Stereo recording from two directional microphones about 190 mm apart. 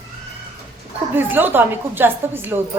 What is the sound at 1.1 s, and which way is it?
A woman's voice, 10° right (ahead or behind).